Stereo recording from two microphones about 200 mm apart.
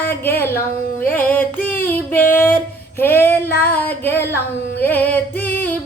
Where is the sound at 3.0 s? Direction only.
10° left (ahead or behind).